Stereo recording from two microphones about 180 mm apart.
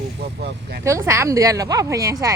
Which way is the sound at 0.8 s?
15° right (ahead or behind).